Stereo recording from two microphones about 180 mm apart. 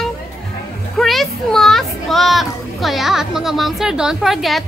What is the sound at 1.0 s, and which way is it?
A woman's voice, centre (ahead or behind).